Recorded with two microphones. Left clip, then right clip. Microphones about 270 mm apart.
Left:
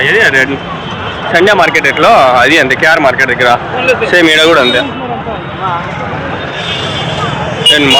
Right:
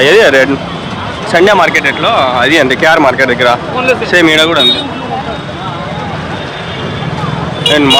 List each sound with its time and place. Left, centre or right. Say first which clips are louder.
0.0 s speech: right 2 dB; centre
7.7 s speech: left 1 dB; centre